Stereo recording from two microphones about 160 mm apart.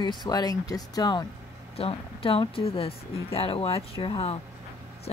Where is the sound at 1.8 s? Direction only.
35° left (ahead or behind).